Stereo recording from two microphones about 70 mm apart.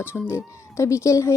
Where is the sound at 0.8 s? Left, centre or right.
Left.